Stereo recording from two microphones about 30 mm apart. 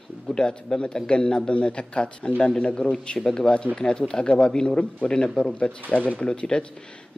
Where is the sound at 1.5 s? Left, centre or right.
Left.